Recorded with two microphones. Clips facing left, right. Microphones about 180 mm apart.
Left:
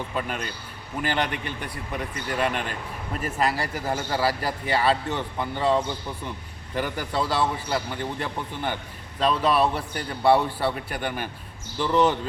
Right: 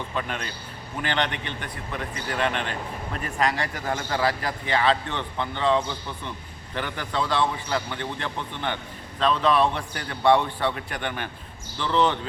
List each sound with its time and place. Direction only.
0.2 s a man's voice: 5° left (ahead or behind)